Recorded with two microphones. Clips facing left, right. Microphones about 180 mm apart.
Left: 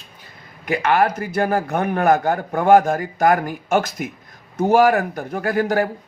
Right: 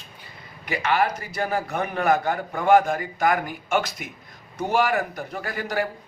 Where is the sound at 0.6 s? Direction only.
50° left (ahead or behind).